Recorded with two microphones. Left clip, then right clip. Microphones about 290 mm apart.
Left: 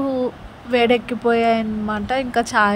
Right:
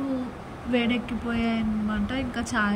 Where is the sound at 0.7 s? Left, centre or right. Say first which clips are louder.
Left 10 dB; centre.